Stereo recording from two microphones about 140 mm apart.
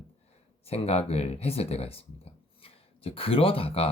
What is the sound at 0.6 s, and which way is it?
Speech, 45° left (ahead or behind).